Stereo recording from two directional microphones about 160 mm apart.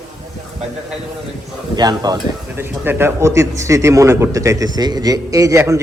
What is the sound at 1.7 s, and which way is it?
Speech, 25° right (ahead or behind).